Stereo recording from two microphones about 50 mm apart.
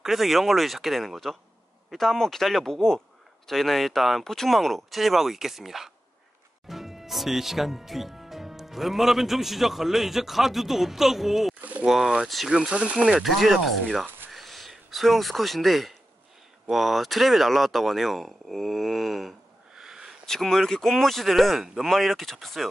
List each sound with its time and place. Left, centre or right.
0.0 s speech: centre; by 13.2 s right
13.2 s speech: centre
14.3 s a sound: centre
16.6 s speech: centre
19.7 s wheeze: centre
20.2 s speech: centre